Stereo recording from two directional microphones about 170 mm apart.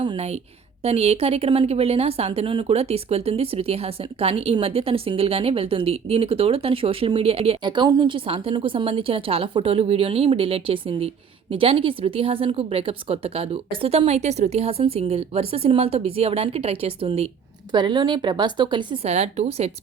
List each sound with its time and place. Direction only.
0.0 s a woman's voice: 35° right (ahead or behind)
19.0 s speech: 40° right (ahead or behind)